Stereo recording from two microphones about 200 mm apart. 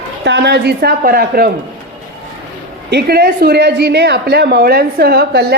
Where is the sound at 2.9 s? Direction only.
55° right (ahead or behind).